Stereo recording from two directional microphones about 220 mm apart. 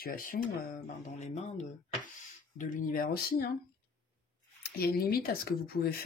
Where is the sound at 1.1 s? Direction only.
30° left (ahead or behind).